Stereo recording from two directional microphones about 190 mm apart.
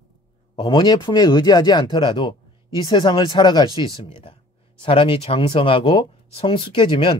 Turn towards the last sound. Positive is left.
turn(degrees=25)  # may be behind; listen again after turning